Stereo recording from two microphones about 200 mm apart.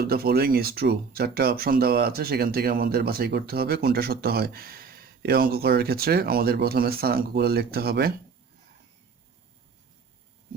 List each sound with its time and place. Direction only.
0.0 s speech: 50° right (ahead or behind)